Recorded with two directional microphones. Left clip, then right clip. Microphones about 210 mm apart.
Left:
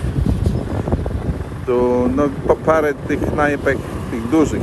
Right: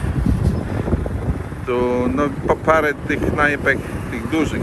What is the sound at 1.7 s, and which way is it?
Speech, centre (ahead or behind).